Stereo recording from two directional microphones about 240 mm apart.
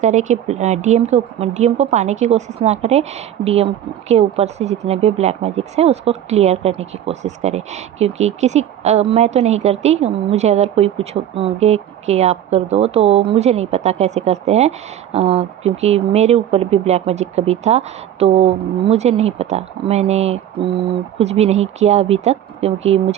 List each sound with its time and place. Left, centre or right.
0.0 s speech: right